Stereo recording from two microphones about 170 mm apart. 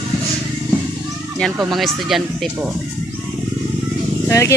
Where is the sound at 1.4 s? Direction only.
Centre (ahead or behind).